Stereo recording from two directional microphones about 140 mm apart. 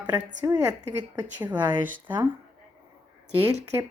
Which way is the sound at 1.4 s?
15° right (ahead or behind).